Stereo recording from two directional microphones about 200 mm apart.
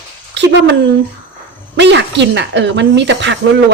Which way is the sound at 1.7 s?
60° right (ahead or behind).